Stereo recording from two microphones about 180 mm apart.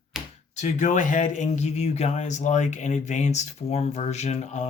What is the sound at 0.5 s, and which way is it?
Speech, 40° left (ahead or behind).